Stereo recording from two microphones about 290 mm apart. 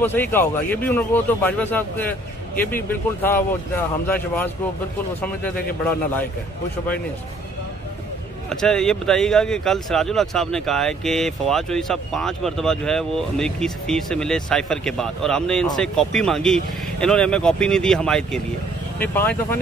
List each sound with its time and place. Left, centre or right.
0.0 s a man's voice: centre
8.5 s a man's voice: centre